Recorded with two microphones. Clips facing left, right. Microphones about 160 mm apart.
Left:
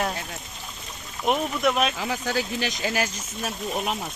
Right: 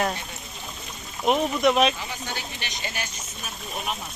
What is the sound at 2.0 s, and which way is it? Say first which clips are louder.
Speech: left 7 dB; 90° left.